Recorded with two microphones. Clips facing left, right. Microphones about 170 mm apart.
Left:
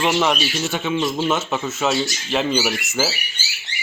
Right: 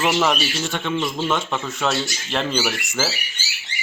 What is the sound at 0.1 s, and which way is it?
Speech, centre (ahead or behind).